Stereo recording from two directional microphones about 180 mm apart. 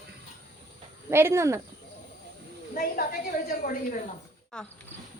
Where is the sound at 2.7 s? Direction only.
55° left (ahead or behind).